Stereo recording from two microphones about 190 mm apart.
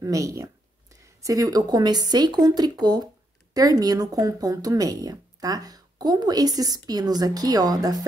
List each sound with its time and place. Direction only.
0.0 s speech: 15° right (ahead or behind)